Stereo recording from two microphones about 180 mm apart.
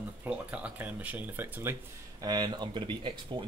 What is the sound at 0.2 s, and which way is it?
Speech, 10° right (ahead or behind).